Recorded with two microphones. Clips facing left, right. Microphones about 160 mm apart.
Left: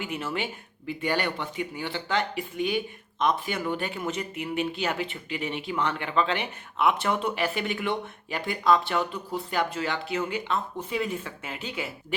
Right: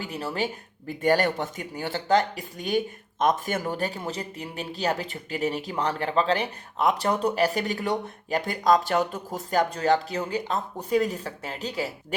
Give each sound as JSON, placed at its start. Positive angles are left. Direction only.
{"t": 0.0, "sound": "speech", "side_deg": -35}